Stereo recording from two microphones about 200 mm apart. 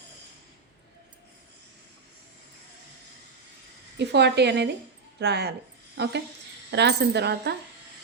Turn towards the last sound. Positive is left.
turn(degrees=-55)  # may be behind; listen again after turning